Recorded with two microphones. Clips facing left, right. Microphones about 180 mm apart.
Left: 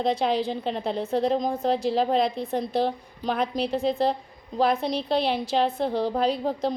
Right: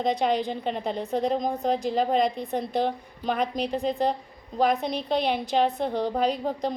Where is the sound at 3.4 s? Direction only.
40° right (ahead or behind).